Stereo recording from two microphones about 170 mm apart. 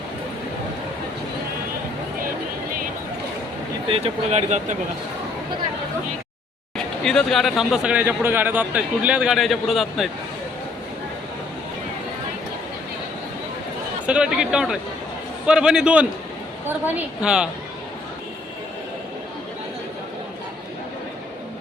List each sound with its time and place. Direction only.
3.8 s speech: 35° right (ahead or behind)
6.7 s speech: 5° left (ahead or behind)
14.1 s a woman's voice: 5° right (ahead or behind)